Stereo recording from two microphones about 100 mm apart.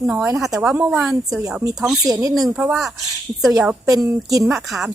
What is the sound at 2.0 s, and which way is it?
Speech, 35° right (ahead or behind).